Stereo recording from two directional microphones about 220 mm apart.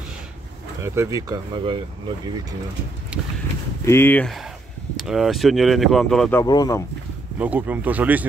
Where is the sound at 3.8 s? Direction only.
10° left (ahead or behind).